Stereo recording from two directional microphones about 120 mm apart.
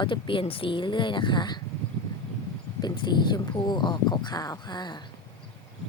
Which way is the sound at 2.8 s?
35° left (ahead or behind).